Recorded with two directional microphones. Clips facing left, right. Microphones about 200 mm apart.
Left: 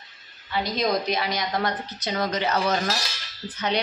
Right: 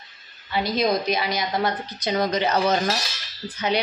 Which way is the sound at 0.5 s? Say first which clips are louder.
Right 2 dB; 5° right (ahead or behind).